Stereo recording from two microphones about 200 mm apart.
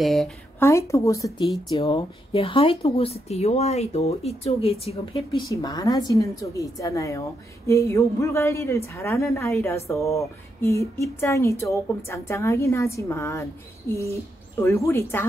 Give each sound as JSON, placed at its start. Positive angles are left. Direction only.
{"t": 0.0, "sound": "speech", "side_deg": 0}
{"t": 0.6, "sound": "speech", "side_deg": 15}
{"t": 5.5, "sound": "a woman's voice", "side_deg": 20}